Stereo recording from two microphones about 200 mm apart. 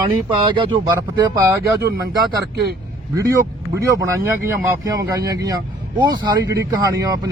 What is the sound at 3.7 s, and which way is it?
Speech, 15° right (ahead or behind).